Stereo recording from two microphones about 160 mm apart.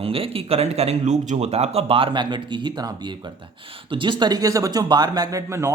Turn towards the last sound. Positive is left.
turn(degrees=-20)  # may be behind; listen again after turning